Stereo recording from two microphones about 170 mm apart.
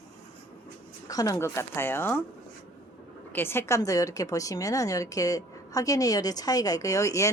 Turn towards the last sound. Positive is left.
turn(degrees=20)  # may be behind; listen again after turning